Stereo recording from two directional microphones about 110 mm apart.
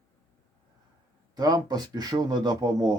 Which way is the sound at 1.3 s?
35° right (ahead or behind).